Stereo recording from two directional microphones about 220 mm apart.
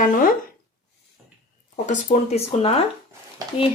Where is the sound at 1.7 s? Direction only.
35° left (ahead or behind).